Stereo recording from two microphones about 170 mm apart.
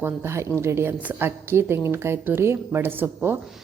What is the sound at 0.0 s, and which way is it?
A woman's voice, 15° right (ahead or behind).